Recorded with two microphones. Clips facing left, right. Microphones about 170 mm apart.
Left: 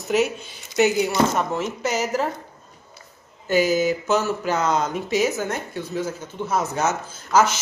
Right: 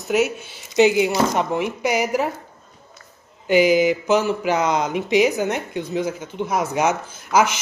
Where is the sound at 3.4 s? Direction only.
15° right (ahead or behind).